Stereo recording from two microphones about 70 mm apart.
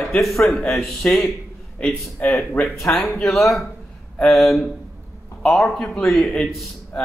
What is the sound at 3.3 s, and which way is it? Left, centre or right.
A man's voice, centre.